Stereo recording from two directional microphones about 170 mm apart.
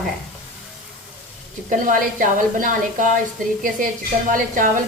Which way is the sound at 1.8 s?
55° right (ahead or behind).